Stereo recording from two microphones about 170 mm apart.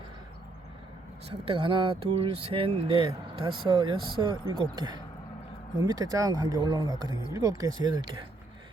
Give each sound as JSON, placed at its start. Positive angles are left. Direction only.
{"t": 1.3, "sound": "speech", "side_deg": -30}